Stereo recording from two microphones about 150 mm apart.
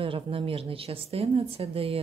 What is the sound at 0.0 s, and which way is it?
A woman's voice, 35° right (ahead or behind).